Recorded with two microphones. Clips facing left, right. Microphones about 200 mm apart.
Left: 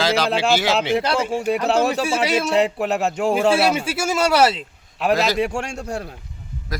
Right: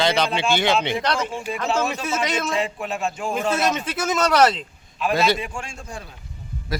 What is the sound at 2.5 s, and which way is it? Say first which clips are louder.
Speech: left 7 dB; 70° left (ahead or behind).